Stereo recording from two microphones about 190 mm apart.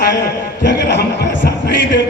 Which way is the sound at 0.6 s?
65° left (ahead or behind).